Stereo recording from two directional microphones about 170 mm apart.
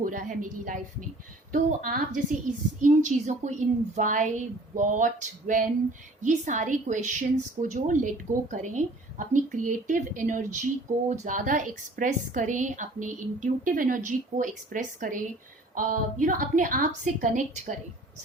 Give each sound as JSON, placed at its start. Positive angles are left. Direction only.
{"t": 0.0, "sound": "a woman's voice", "side_deg": -50}